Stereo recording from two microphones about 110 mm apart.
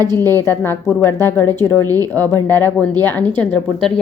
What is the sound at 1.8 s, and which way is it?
Speech, 35° right (ahead or behind).